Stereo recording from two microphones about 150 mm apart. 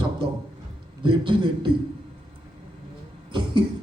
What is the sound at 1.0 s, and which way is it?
Speech, 30° right (ahead or behind).